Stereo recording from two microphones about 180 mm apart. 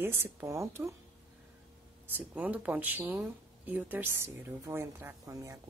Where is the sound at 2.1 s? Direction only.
10° right (ahead or behind).